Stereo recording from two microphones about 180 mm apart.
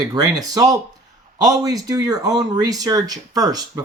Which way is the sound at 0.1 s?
20° right (ahead or behind).